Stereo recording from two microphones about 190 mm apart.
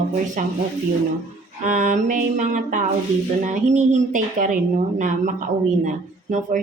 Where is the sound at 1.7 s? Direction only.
40° right (ahead or behind).